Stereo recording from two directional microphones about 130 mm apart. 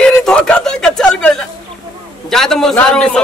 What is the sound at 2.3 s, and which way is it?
Speech, 5° left (ahead or behind).